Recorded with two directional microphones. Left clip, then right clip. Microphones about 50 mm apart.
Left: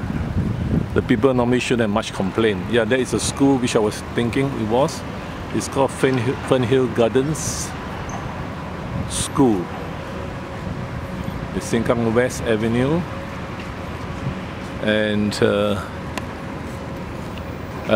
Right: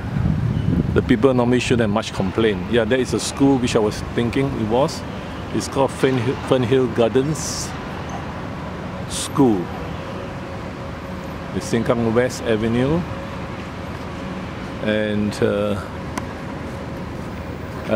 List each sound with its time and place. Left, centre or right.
0.9 s speech: centre
9.4 s speech: centre
11.7 s speech: centre
14.9 s speech: left